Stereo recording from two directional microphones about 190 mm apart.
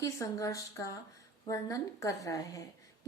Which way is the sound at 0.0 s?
20° left (ahead or behind).